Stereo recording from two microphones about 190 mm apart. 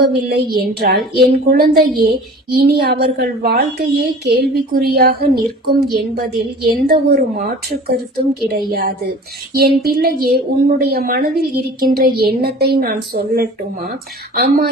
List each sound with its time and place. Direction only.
0.0 s a woman's voice: 55° right (ahead or behind)